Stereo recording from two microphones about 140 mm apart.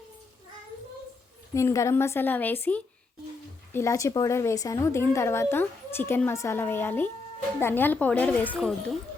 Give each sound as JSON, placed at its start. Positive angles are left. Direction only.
{"t": 1.5, "sound": "a woman's voice", "side_deg": 20}